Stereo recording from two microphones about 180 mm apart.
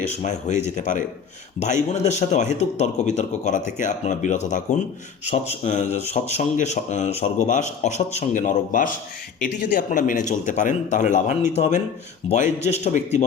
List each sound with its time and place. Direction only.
0.0 s speech: 40° left (ahead or behind)